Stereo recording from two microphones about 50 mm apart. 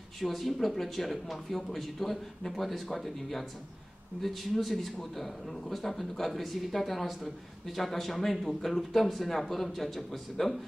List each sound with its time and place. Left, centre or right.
0.2 s a man's voice: centre